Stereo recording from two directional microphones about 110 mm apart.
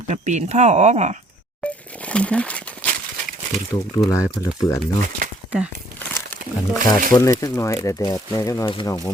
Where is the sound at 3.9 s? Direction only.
30° left (ahead or behind).